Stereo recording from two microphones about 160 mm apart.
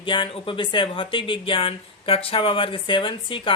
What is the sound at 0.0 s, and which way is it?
Speech, 30° left (ahead or behind).